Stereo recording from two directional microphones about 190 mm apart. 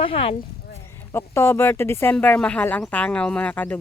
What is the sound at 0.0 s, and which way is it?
Speech, 30° left (ahead or behind).